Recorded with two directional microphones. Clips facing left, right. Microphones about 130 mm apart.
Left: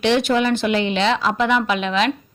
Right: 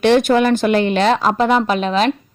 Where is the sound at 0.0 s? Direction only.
50° right (ahead or behind).